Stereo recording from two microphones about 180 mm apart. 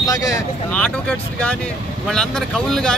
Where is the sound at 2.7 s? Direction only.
5° left (ahead or behind).